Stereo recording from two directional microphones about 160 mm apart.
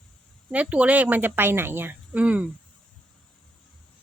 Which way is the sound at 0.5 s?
10° right (ahead or behind).